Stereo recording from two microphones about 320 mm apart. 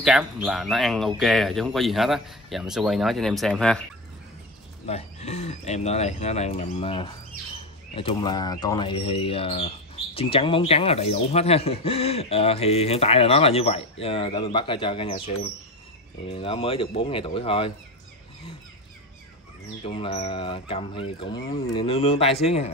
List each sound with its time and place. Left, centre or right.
0.0 s speech: centre
4.8 s speech: centre
19.8 s speech: centre